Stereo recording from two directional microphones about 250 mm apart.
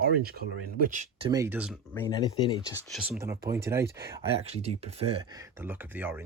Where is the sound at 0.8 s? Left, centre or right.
Right.